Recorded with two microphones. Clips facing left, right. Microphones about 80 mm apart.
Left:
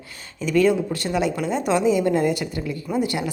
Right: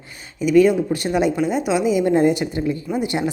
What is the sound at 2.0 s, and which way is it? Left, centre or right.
Speech, right.